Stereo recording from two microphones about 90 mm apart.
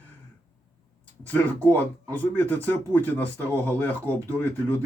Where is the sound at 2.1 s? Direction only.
20° left (ahead or behind).